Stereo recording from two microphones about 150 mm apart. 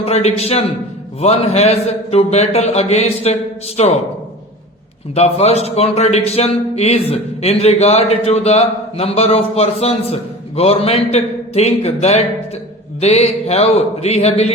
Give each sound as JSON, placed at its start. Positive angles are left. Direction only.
{"t": 0.0, "sound": "speech", "side_deg": 45}
{"t": 5.1, "sound": "speech", "side_deg": 45}